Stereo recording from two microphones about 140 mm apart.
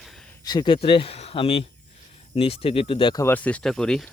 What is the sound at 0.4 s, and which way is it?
Speech, 30° left (ahead or behind).